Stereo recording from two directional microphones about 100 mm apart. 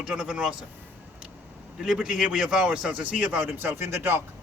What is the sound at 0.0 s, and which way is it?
Speech, 5° right (ahead or behind).